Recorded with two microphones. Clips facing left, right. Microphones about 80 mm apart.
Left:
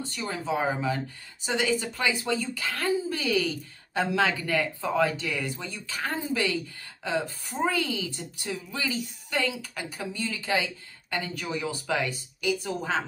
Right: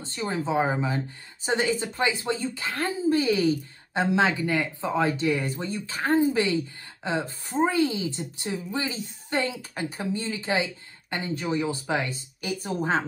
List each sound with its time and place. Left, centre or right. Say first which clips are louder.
0.0 s a woman's voice: right 3 dB; right